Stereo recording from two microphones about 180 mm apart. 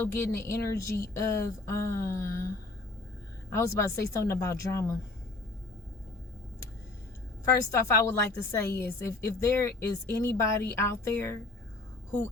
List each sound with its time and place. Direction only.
0.2 s speech: 15° left (ahead or behind)
3.5 s speech: 15° left (ahead or behind)
7.4 s speech: 15° left (ahead or behind)